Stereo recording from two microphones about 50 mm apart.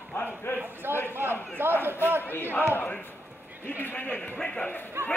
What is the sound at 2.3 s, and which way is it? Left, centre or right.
Speech, left.